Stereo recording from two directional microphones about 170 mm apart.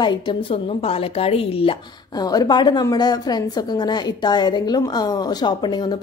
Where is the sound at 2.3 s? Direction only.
25° left (ahead or behind).